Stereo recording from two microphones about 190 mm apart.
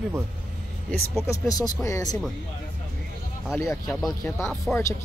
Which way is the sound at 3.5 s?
15° left (ahead or behind).